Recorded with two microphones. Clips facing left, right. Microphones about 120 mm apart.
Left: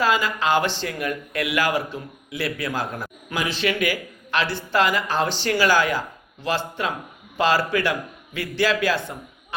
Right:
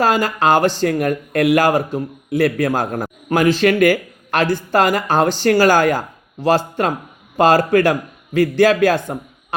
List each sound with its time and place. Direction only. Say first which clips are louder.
0.0 s a man's voice: right 6 dB; 45° right (ahead or behind)